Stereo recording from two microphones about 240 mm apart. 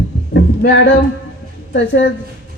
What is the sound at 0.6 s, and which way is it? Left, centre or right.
Speech, left.